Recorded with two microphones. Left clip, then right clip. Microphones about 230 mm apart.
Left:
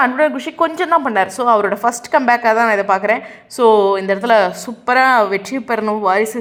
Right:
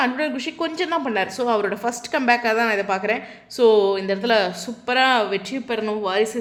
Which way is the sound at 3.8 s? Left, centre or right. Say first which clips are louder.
Left 6 dB; centre.